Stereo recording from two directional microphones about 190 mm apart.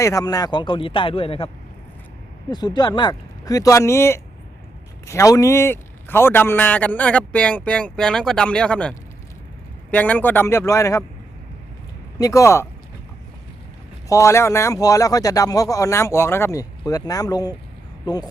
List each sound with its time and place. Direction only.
0.0 s speech: 15° left (ahead or behind)
2.5 s a man's voice: 20° left (ahead or behind)
12.2 s a man's voice: 15° left (ahead or behind)
14.1 s a man's voice: 15° left (ahead or behind)